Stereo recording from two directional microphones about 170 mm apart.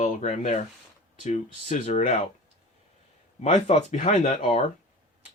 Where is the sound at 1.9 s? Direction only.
40° left (ahead or behind).